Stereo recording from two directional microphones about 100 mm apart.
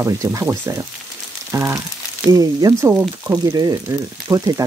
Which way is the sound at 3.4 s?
35° right (ahead or behind).